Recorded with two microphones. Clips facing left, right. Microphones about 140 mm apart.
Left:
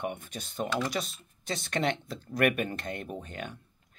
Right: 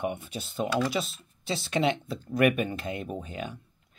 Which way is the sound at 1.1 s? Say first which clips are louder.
Right 3 dB; 50° left (ahead or behind).